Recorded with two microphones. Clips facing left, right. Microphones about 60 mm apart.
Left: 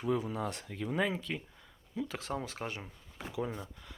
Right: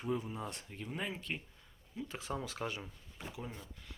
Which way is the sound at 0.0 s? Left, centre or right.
Left.